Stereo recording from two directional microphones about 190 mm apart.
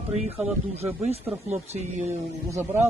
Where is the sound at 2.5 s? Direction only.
10° right (ahead or behind).